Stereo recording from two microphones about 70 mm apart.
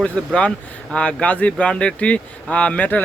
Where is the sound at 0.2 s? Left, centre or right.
Centre.